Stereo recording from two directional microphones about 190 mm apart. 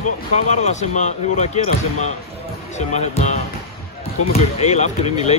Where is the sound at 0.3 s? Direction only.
35° left (ahead or behind).